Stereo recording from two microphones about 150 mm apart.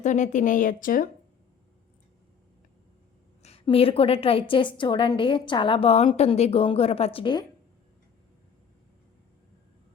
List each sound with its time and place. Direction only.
0.0 s a woman's voice: 55° left (ahead or behind)
3.4 s a woman's voice: 40° left (ahead or behind)